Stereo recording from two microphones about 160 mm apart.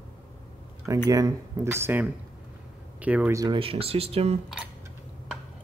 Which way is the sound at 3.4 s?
30° right (ahead or behind).